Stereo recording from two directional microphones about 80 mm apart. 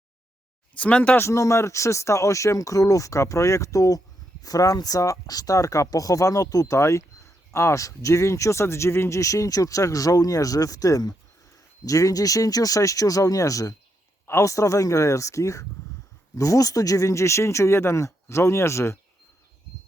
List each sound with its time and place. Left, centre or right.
0.8 s speech: centre
1.2 s speech: left